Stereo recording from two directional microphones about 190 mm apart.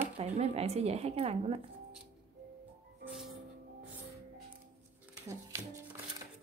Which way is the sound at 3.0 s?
Centre (ahead or behind).